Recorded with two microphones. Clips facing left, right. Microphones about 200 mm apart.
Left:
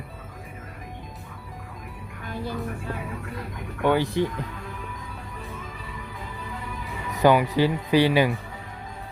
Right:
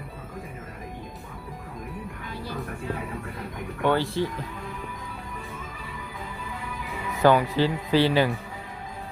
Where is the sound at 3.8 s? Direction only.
15° left (ahead or behind).